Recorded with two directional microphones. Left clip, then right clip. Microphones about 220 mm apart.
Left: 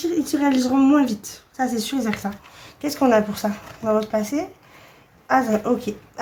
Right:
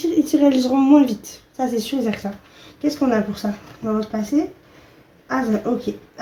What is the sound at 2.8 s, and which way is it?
Speech, 35° left (ahead or behind).